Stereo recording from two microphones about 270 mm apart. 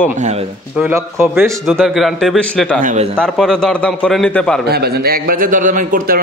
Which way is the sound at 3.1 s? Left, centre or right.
Centre.